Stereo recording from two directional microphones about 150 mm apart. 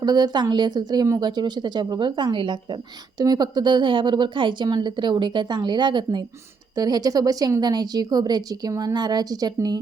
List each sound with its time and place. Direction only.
0.0 s a woman's voice: 25° right (ahead or behind)